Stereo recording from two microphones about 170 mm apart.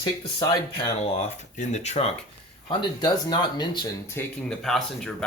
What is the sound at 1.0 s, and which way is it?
Speech, 40° left (ahead or behind).